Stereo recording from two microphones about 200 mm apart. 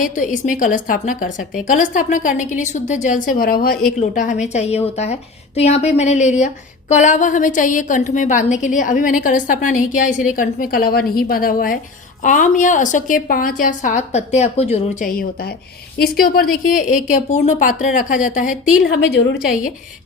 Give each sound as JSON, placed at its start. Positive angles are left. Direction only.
{"t": 0.0, "sound": "speech", "side_deg": 40}
{"t": 18.8, "sound": "a woman's voice", "side_deg": 55}